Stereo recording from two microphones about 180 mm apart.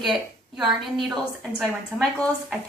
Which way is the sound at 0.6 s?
Centre (ahead or behind).